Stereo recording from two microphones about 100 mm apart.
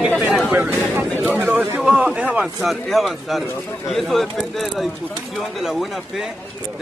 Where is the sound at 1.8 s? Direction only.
5° right (ahead or behind).